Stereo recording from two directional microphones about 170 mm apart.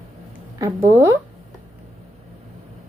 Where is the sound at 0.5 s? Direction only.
20° right (ahead or behind).